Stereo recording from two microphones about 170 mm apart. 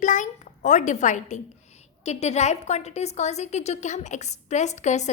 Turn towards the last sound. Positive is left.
turn(degrees=45)  # may be behind; listen again after turning